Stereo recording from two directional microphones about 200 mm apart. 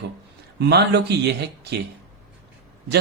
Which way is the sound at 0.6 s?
55° right (ahead or behind).